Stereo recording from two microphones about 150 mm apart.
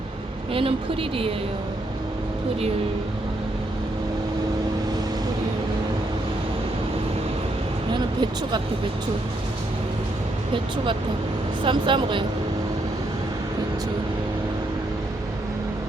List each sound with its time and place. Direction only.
7.9 s speech: 30° right (ahead or behind)
11.6 s speech: 30° right (ahead or behind)